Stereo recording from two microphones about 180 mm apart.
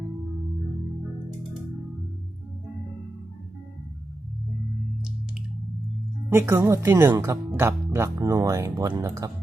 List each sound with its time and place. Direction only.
6.3 s speech: 15° right (ahead or behind)